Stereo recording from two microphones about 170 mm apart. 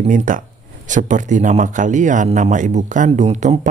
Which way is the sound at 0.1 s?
50° right (ahead or behind).